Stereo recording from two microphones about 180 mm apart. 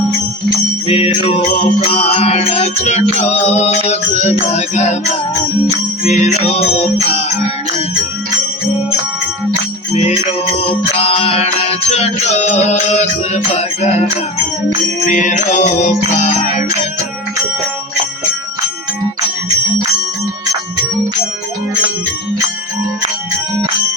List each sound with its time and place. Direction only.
0.9 s music: 30° left (ahead or behind)
6.1 s music: 35° left (ahead or behind)
10.5 s music: 35° left (ahead or behind)
15.1 s music: 45° left (ahead or behind)